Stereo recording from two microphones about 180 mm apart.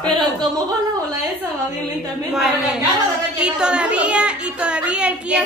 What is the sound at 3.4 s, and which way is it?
A woman's voice, 5° right (ahead or behind).